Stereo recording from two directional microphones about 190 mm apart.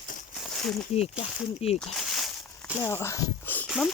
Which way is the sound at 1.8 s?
Centre (ahead or behind).